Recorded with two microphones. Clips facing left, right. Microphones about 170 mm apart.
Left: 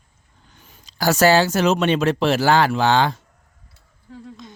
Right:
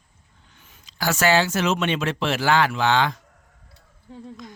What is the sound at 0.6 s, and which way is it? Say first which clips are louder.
Speech: left 4 dB; 35° left (ahead or behind).